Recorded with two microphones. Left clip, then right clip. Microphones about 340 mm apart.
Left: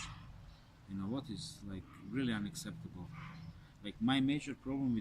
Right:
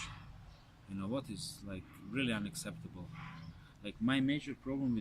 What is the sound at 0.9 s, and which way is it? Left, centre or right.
Speech, centre.